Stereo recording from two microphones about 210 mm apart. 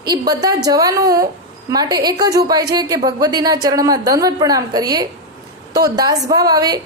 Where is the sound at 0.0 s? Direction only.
20° right (ahead or behind).